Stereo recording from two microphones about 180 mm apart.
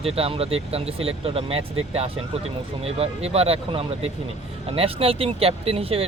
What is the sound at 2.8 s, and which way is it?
Speech, 35° right (ahead or behind).